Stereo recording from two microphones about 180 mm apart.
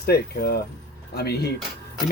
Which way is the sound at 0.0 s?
60° left (ahead or behind).